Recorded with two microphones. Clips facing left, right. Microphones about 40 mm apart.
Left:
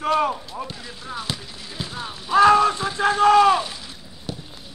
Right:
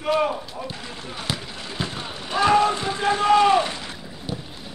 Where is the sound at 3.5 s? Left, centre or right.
Right.